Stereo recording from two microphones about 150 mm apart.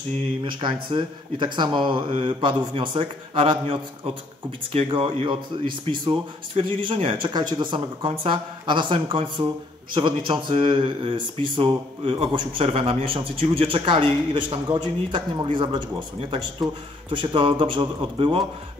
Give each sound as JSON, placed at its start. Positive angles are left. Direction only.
{"t": 0.5, "sound": "speech", "side_deg": -30}